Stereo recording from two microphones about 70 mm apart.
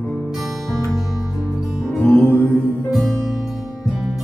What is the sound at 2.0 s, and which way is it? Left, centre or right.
Music, centre.